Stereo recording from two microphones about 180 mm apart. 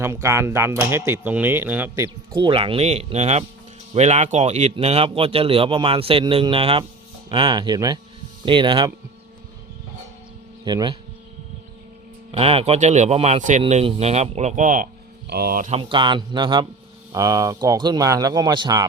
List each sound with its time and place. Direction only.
0.0 s speech: 15° right (ahead or behind)
2.3 s speech: 30° right (ahead or behind)
10.7 s speech: 25° right (ahead or behind)
12.3 s speech: 30° right (ahead or behind)
15.3 s speech: 55° right (ahead or behind)
15.7 s speech: 30° right (ahead or behind)